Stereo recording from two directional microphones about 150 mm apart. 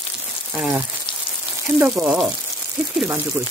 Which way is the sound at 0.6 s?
15° right (ahead or behind).